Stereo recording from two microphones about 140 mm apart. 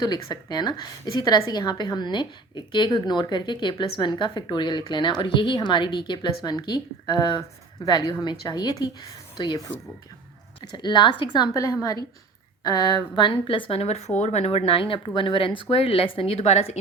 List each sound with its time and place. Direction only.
0.1 s a woman's voice: 30° left (ahead or behind); by 16.7 s 50° left (ahead or behind)